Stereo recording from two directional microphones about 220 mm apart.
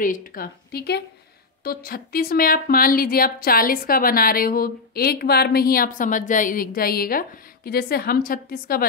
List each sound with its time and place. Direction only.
0.0 s a woman's voice: 40° left (ahead or behind)